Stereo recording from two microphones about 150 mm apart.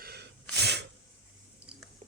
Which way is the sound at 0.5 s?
90° right.